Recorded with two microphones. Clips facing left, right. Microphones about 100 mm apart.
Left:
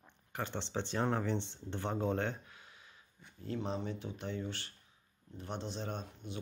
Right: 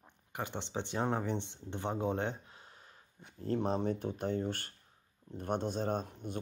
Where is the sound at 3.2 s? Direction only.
50° right (ahead or behind).